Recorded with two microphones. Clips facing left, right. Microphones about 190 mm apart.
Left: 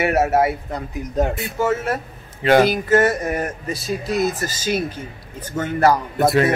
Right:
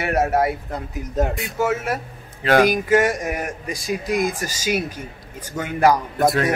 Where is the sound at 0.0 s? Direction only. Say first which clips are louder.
Left 2 dB; 5° left (ahead or behind).